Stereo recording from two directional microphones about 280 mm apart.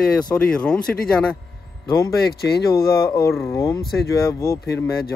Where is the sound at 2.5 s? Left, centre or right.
Left.